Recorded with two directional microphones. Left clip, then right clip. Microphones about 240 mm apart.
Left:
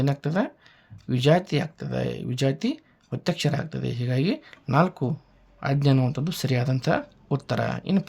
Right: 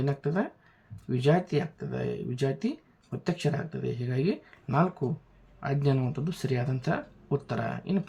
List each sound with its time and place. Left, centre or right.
0.0 s speech: left